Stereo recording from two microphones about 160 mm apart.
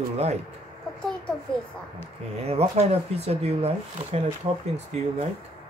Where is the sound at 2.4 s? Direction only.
40° right (ahead or behind).